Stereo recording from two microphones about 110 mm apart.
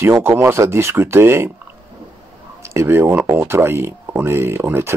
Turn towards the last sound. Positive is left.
turn(degrees=-20)  # may be behind; listen again after turning